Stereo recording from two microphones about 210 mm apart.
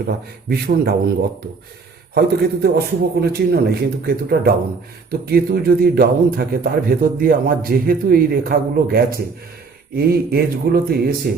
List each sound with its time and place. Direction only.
0.0 s a man's voice: 45° right (ahead or behind)
2.1 s a man's voice: 50° right (ahead or behind)